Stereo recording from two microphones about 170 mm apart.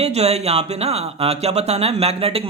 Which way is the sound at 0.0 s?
40° right (ahead or behind).